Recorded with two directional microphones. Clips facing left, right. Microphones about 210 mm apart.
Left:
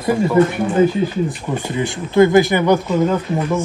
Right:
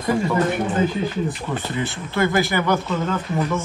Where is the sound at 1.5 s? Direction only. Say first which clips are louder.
Left 4 dB; 15° left (ahead or behind).